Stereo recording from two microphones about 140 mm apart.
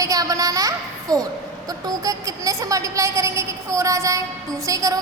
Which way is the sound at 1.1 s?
25° right (ahead or behind).